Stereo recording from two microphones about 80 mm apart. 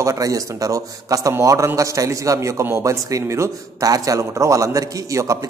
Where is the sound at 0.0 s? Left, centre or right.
Right.